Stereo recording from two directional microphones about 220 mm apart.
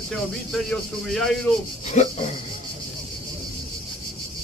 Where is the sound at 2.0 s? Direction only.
30° left (ahead or behind).